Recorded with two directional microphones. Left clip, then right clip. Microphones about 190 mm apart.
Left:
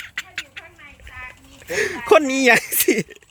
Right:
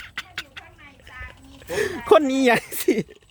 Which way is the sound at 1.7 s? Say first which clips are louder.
Left 1 dB; 10° right (ahead or behind).